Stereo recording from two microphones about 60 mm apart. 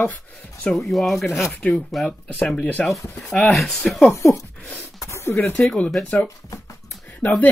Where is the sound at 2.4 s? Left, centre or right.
Centre.